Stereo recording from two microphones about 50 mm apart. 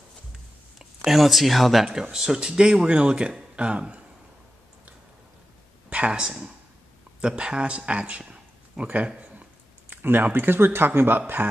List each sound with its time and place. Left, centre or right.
0.7 s speech: centre
2.0 s speech: centre
5.9 s a man's voice: right
9.8 s speech: right